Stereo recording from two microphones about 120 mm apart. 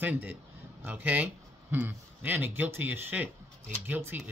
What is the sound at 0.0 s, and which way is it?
Speech, 15° right (ahead or behind).